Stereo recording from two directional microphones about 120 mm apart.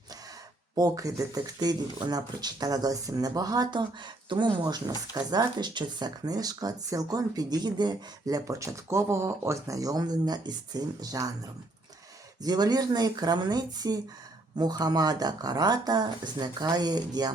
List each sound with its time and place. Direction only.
0.8 s speech: 30° right (ahead or behind)
12.4 s speech: 35° right (ahead or behind)